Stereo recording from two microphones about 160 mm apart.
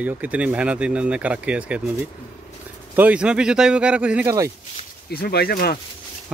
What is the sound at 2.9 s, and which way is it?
Speech, 10° right (ahead or behind).